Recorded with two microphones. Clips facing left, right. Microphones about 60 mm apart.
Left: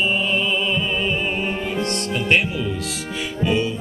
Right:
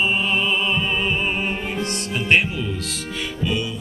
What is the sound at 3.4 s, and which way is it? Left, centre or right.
Music, left.